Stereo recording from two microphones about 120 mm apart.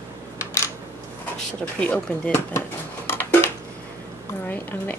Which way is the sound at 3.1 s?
20° left (ahead or behind).